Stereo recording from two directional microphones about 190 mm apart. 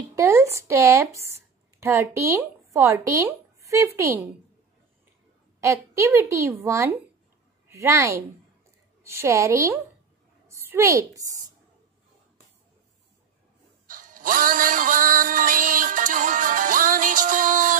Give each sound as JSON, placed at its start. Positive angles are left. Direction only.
{"t": 0.1, "sound": "speech", "side_deg": -15}
{"t": 5.6, "sound": "a woman's voice", "side_deg": -15}
{"t": 13.8, "sound": "music", "side_deg": -45}